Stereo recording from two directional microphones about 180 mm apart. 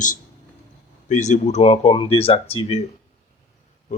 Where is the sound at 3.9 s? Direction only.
40° left (ahead or behind).